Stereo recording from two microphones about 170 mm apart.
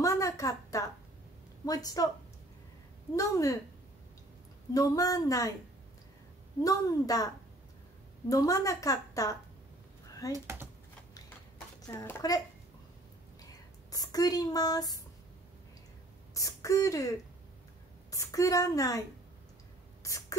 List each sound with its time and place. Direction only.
0.0 s a sound: 20° left (ahead or behind)
1.7 s a woman's voice: 20° left (ahead or behind)
3.2 s a woman's voice: 20° left (ahead or behind)
4.7 s a woman's voice: 20° left (ahead or behind)
6.6 s a woman's voice: 20° left (ahead or behind)
8.3 s a woman's voice: 20° left (ahead or behind)
10.3 s speech: 15° right (ahead or behind)
11.9 s a child's voice: 15° left (ahead or behind)
13.9 s a woman's voice: 20° left (ahead or behind)
16.3 s speech: 20° left (ahead or behind)
18.1 s a woman's voice: 20° left (ahead or behind)
20.0 s a sound: 20° left (ahead or behind)